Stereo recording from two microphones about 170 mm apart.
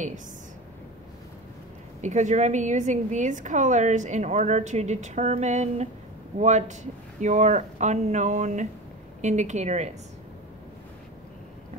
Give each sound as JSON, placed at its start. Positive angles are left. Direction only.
{"t": 2.0, "sound": "a woman's voice", "side_deg": -45}